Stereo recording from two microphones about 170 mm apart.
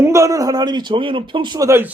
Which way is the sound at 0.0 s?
15° right (ahead or behind).